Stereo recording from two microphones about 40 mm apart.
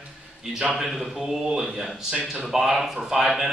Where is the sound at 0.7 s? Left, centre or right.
Centre.